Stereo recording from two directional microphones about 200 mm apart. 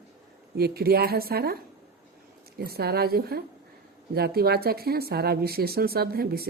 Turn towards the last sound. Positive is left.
turn(degrees=-50)  # may be behind; listen again after turning